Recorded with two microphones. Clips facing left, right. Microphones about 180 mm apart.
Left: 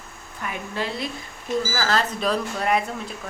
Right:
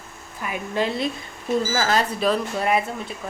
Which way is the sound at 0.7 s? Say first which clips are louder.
Right 6 dB; 20° right (ahead or behind).